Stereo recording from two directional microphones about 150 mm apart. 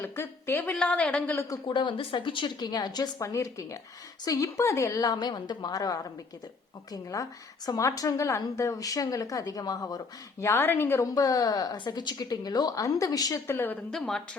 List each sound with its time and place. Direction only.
0.0 s a woman's voice: 15° left (ahead or behind)
1.5 s a woman's voice: 30° left (ahead or behind)
13.9 s speech: 5° left (ahead or behind)